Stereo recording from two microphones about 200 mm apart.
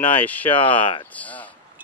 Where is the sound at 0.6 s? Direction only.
25° left (ahead or behind).